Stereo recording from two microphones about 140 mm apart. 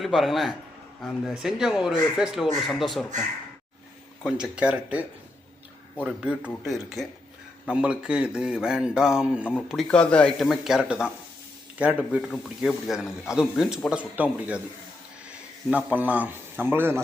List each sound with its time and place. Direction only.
0.0 s a man's voice: centre (ahead or behind)
4.2 s a man's voice: 5° right (ahead or behind)
15.7 s speech: 10° right (ahead or behind)